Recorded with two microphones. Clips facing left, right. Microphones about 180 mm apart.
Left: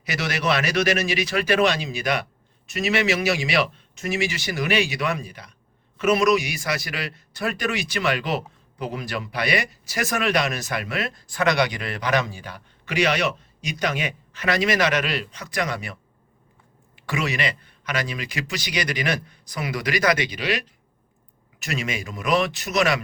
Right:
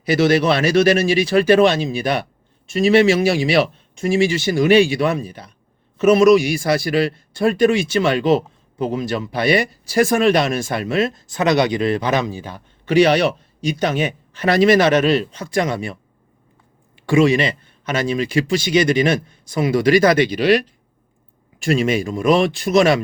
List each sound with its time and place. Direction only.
0.0 s a man's voice: 30° right (ahead or behind)
21.6 s a man's voice: 30° right (ahead or behind)